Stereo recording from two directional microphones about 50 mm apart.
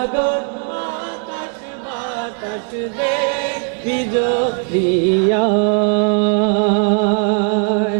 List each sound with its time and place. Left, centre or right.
0.0 s chant: centre
3.0 s choir: centre